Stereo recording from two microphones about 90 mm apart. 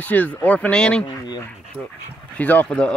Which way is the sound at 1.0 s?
55° left (ahead or behind).